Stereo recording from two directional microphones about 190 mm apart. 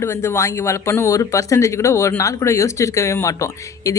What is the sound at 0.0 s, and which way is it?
Speech, 15° left (ahead or behind).